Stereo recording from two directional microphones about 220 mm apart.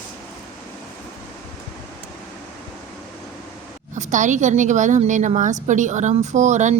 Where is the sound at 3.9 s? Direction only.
35° right (ahead or behind).